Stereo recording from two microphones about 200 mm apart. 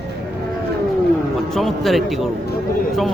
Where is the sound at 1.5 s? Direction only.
Centre (ahead or behind).